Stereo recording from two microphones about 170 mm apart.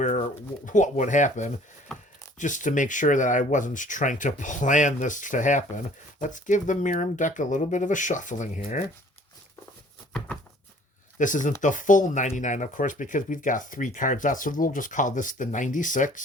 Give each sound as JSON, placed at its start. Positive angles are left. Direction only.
{"t": 0.0, "sound": "speech", "side_deg": 50}
{"t": 10.1, "sound": "a sound", "side_deg": 5}
{"t": 11.2, "sound": "speech", "side_deg": 50}